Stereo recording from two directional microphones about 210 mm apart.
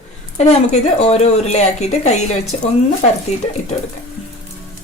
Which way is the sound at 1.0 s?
30° left (ahead or behind).